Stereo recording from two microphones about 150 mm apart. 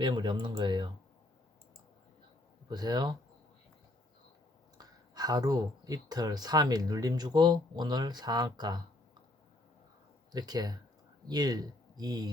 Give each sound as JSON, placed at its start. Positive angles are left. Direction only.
{"t": 0.0, "sound": "speech", "side_deg": -30}
{"t": 2.6, "sound": "speech", "side_deg": -30}
{"t": 4.8, "sound": "speech", "side_deg": -25}
{"t": 10.3, "sound": "speech", "side_deg": -25}